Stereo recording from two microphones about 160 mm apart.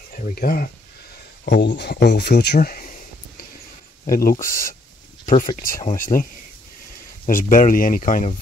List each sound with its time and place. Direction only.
0.2 s speech: 70° left (ahead or behind)
1.4 s speech: 90° left; by 2.9 s 65° left (ahead or behind)
4.1 s speech: 65° left (ahead or behind)
7.2 s speech: 60° left (ahead or behind)